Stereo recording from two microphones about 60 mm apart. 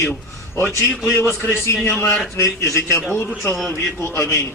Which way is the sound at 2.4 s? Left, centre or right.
Left.